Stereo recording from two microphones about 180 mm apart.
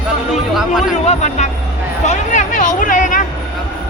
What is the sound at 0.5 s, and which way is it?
Speech, centre (ahead or behind).